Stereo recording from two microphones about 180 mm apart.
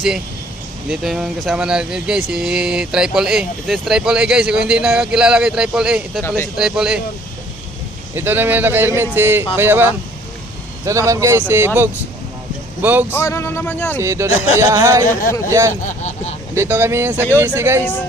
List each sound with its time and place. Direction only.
0.9 s speech: centre (ahead or behind)
6.2 s speech: 15° left (ahead or behind)
6.6 s speech: 5° right (ahead or behind)
8.1 s speech: 10° right (ahead or behind)
13.1 s speech: 15° left (ahead or behind)
14.0 s speech: 15° right (ahead or behind)
15.8 s speech: 40° left (ahead or behind)
16.6 s speech: 10° right (ahead or behind)